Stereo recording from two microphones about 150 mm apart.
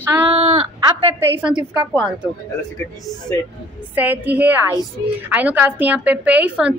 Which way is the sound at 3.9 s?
10° right (ahead or behind).